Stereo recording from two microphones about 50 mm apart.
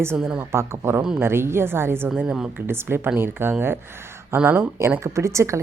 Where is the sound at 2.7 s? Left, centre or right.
Right.